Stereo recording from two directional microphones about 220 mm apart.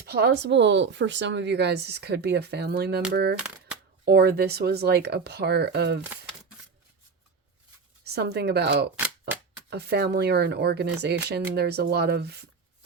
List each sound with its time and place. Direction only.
0.0 s a woman's voice: 45° right (ahead or behind)
3.3 s a sound: 5° right (ahead or behind)
4.0 s a woman's voice: 45° right (ahead or behind)
6.0 s crumpling: 10° right (ahead or behind)
8.0 s a woman's voice: 50° right (ahead or behind)